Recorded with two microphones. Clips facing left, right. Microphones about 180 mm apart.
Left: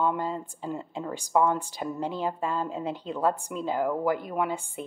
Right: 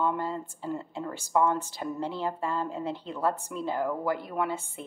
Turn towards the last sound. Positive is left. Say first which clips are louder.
# left 2 dB
turn(degrees=15)  # may be behind; listen again after turning